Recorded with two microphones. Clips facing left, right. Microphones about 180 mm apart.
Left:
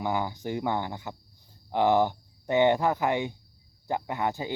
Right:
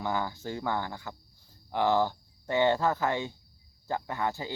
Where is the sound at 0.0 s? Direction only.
15° left (ahead or behind).